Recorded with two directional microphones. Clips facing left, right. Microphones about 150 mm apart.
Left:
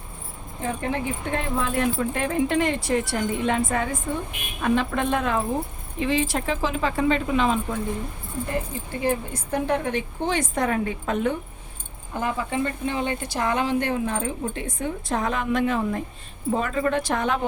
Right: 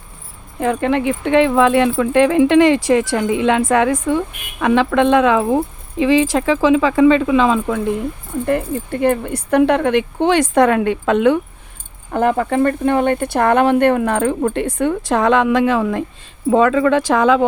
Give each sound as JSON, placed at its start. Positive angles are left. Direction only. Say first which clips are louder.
{"t": 0.6, "sound": "speech", "louder": "right 10 dB", "side_deg": -90}
{"t": 8.4, "sound": "speech", "louder": "right 13 dB", "side_deg": -65}
{"t": 12.1, "sound": "speech", "louder": "right 10 dB", "side_deg": -60}